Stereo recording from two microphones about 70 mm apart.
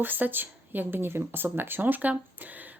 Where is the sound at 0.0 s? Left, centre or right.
Right.